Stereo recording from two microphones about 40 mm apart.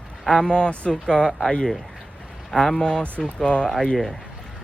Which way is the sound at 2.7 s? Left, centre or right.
Left.